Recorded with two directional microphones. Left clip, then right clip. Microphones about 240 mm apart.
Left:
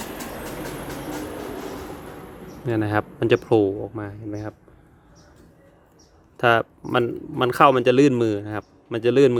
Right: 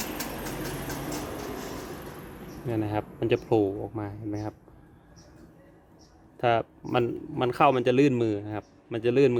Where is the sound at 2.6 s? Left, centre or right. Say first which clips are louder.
Left 7 dB; centre.